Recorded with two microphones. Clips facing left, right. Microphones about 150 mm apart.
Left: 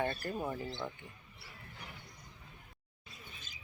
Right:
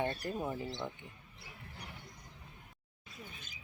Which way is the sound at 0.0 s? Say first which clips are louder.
Even; 20° right (ahead or behind).